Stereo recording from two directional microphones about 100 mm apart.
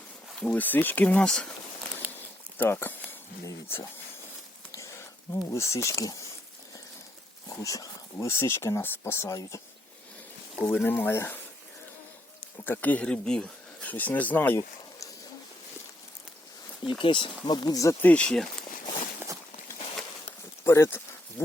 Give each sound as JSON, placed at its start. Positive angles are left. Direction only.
{"t": 0.3, "sound": "speech", "side_deg": 5}
{"t": 0.6, "sound": "speech", "side_deg": 20}
{"t": 2.0, "sound": "a sound", "side_deg": -15}
{"t": 2.6, "sound": "speech", "side_deg": 20}
{"t": 7.4, "sound": "speech", "side_deg": 35}
{"t": 10.6, "sound": "speech", "side_deg": 15}
{"t": 12.6, "sound": "speech", "side_deg": 15}
{"t": 17.0, "sound": "speech", "side_deg": 55}
{"t": 18.0, "sound": "speech", "side_deg": 10}
{"t": 19.2, "sound": "a sound", "side_deg": -20}
{"t": 20.7, "sound": "a sound", "side_deg": 30}